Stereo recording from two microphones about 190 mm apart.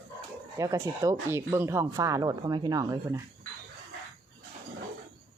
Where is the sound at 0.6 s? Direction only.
15° right (ahead or behind).